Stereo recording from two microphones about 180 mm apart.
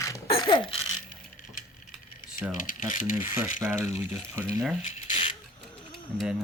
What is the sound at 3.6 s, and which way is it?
Speech, 15° right (ahead or behind).